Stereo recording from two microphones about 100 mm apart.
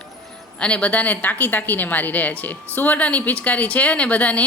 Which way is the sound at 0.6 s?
10° left (ahead or behind).